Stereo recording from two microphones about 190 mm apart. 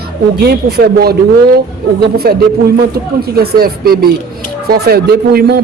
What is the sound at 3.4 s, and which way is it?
Speech, 55° right (ahead or behind).